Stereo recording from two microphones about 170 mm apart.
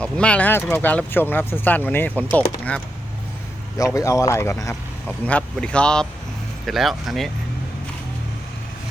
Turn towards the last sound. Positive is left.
turn(degrees=0)  # may be behind; listen again after turning